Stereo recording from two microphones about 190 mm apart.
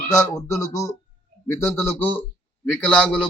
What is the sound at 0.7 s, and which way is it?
A man's voice, 15° left (ahead or behind).